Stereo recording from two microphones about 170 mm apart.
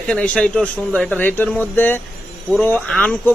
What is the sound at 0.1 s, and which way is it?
A man's voice, 5° left (ahead or behind).